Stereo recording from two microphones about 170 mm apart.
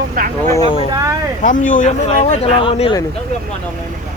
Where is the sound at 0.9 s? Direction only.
20° right (ahead or behind).